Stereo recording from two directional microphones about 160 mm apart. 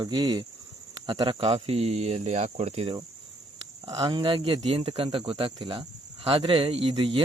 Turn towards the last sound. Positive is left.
turn(degrees=-35)  # may be behind; listen again after turning